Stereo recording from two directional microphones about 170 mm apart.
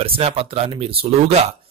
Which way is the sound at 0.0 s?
35° right (ahead or behind).